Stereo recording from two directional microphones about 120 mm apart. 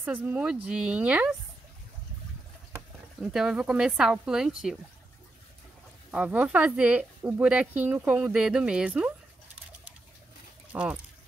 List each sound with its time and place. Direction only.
0.0 s speech: 15° right (ahead or behind)
3.2 s speech: 5° right (ahead or behind)
6.1 s speech: 10° right (ahead or behind)
10.7 s speech: 10° right (ahead or behind)